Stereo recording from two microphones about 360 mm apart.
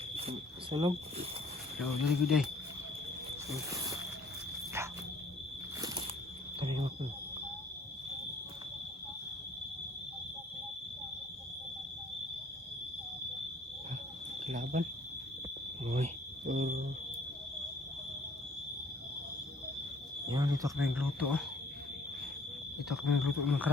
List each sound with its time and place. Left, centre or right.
0.2 s speech: centre
1.8 s speech: centre
3.5 s speech: centre
6.6 s speech: centre
14.4 s smoke detector: right
16.5 s a sound: right
20.3 s speech: centre
22.9 s speech: centre